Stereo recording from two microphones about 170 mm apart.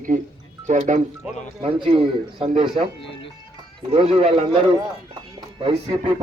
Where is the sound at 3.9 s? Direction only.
35° right (ahead or behind).